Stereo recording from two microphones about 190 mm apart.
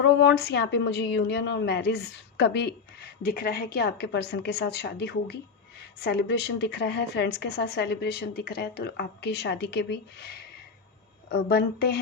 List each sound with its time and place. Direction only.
0.0 s a woman's voice: 65° left (ahead or behind)